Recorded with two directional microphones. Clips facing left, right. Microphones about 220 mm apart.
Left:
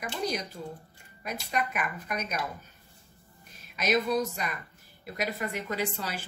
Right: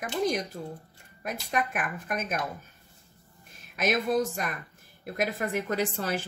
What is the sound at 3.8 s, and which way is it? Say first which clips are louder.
A woman's voice: right 1 dB; 50° right (ahead or behind).